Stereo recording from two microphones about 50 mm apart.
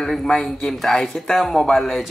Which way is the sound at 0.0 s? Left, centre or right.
Centre.